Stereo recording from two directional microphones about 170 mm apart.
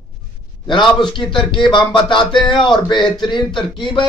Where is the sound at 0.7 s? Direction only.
30° left (ahead or behind).